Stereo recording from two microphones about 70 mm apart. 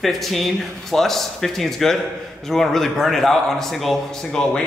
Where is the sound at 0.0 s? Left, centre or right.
Centre.